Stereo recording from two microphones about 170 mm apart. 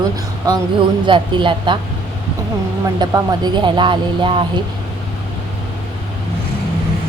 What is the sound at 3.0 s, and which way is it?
Speech, 25° right (ahead or behind).